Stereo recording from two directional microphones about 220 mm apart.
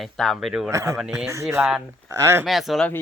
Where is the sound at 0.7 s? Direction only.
15° right (ahead or behind).